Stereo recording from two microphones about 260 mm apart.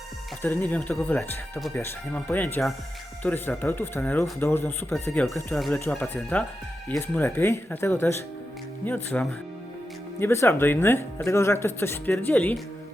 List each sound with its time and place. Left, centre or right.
0.4 s speech: centre